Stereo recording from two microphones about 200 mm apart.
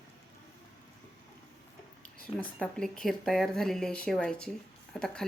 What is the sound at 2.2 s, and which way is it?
Speech, 5° left (ahead or behind).